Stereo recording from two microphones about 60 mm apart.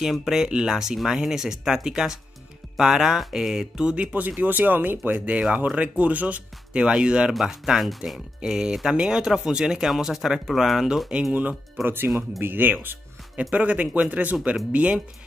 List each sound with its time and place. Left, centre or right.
0.0 s speech: centre
8.4 s speech: centre
11.3 s speech: right
13.4 s speech: right